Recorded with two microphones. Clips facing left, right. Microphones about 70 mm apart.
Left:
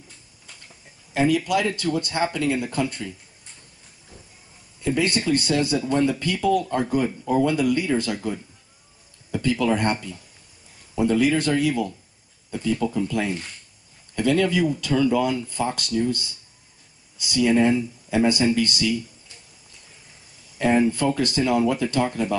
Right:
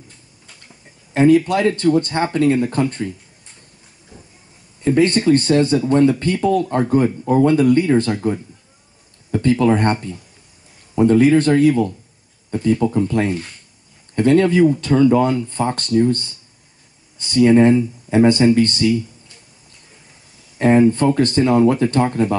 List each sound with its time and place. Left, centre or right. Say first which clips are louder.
1.1 s speech: right 7 dB; right
4.8 s speech: right 8 dB; right
11.0 s speech: right 8 dB; right
20.5 s speech: right 7 dB; right